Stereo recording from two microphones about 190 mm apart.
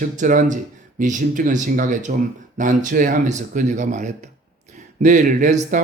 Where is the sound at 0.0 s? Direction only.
45° right (ahead or behind).